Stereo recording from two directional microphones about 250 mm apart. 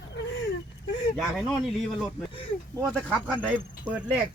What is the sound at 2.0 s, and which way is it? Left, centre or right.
Speech, left.